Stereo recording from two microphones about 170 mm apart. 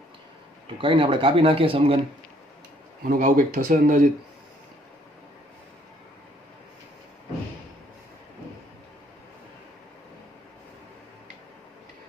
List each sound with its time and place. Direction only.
0.8 s speech: 30° right (ahead or behind)
3.0 s speech: 55° right (ahead or behind)